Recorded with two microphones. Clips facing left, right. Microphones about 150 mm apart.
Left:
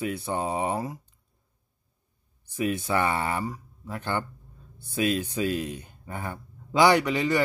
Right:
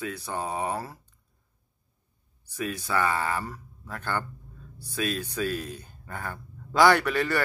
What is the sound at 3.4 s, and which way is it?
A man's voice, 15° left (ahead or behind).